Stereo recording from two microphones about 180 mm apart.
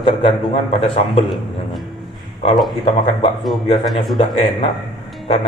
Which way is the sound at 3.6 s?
25° left (ahead or behind).